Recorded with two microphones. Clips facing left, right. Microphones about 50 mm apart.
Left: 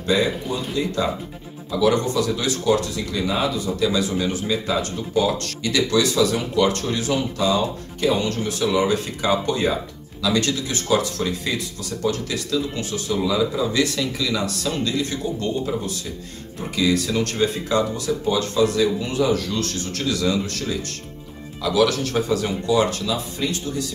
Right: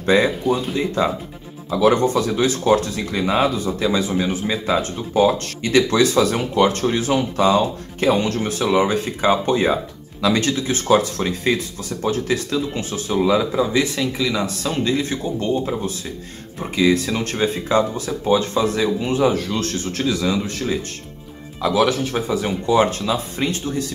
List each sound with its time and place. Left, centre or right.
0.0 s speech: right
0.4 s speech: centre
0.7 s speech: right
16.5 s speech: right
22.0 s a man's voice: centre
22.7 s speech: right